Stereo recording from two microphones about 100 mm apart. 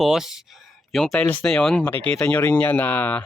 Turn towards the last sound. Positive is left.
turn(degrees=15)  # may be behind; listen again after turning